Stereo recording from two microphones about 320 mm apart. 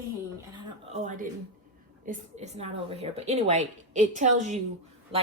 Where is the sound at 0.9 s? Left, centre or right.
Right.